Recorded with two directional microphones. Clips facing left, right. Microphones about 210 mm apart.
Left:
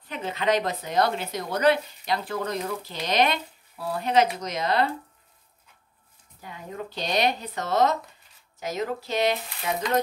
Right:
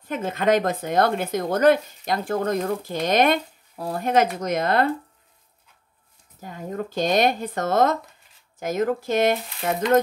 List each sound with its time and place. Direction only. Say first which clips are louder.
0.1 s speech: right 4 dB; 50° right (ahead or behind)
6.4 s speech: right 6 dB; 45° right (ahead or behind)